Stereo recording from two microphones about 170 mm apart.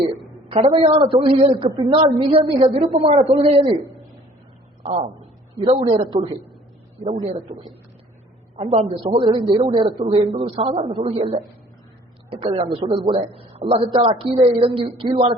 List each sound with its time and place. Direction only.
0.4 s a man's voice: 35° right (ahead or behind)
4.9 s a man's voice: 40° right (ahead or behind)
7.5 s a man's voice: 35° right (ahead or behind)